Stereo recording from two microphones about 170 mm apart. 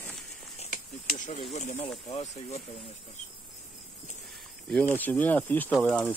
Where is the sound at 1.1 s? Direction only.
50° left (ahead or behind).